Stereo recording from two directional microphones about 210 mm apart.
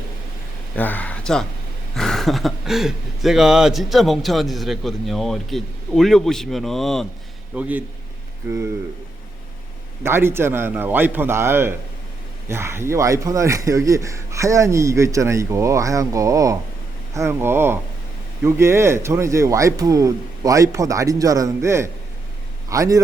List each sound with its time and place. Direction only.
0.8 s a sound: 10° left (ahead or behind)
2.0 s a man's voice: centre (ahead or behind)
10.0 s a man's voice: 10° right (ahead or behind)